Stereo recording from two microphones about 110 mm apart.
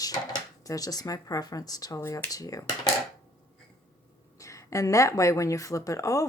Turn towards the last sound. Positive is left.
turn(degrees=30)  # may be behind; listen again after turning